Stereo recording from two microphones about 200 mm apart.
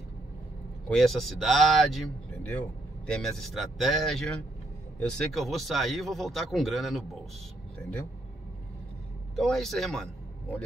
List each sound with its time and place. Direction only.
0.8 s speech: centre (ahead or behind)
3.1 s speech: centre (ahead or behind)
9.3 s speech: centre (ahead or behind)